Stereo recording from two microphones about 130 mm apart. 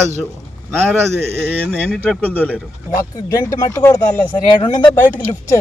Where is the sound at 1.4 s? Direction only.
10° left (ahead or behind).